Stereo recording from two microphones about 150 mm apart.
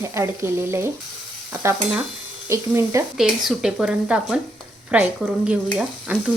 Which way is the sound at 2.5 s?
20° right (ahead or behind).